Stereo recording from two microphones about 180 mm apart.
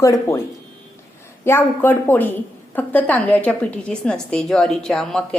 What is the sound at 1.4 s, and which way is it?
A woman's voice, 10° left (ahead or behind).